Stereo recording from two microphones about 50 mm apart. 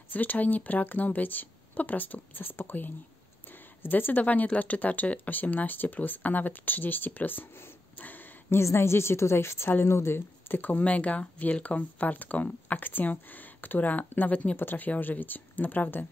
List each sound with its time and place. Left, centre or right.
0.1 s speech: left
8.5 s a woman's voice: left
10.8 s speech: left
14.6 s speech: left